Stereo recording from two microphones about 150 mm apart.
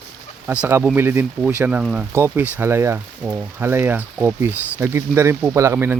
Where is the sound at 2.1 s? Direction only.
15° right (ahead or behind).